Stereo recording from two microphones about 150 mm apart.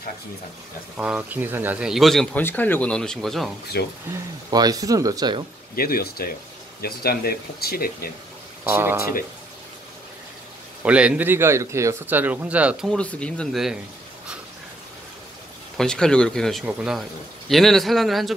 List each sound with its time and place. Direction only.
0.9 s speech: 10° right (ahead or behind)
2.4 s speech: 10° left (ahead or behind)
3.8 s speech: 90° left
4.5 s speech: 25° right (ahead or behind)
5.8 s speech: 80° left
8.6 s speech: 15° right (ahead or behind)
10.8 s speech: 10° right (ahead or behind)
12.9 s speech: 5° left (ahead or behind)
15.8 s speech: 5° left (ahead or behind)